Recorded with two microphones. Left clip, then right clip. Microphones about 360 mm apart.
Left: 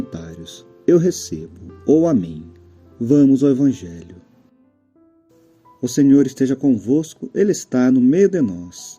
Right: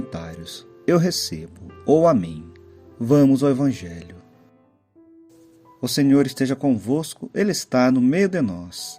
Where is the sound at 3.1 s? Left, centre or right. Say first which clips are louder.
Left 3 dB; centre.